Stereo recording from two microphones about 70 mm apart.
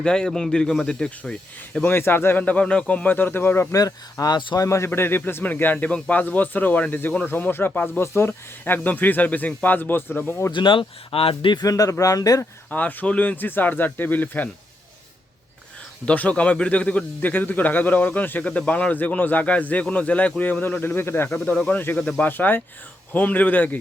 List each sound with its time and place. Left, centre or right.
0.0 s speech: centre
1.8 s speech: left
2.4 s a man's voice: centre
3.2 s speech: left
3.8 s speech: left
4.9 s a man's voice: left
11.5 s speech: left
12.7 s a man's voice: left
16.0 s a man's voice: centre; by 21.2 s left
21.2 s a man's voice: left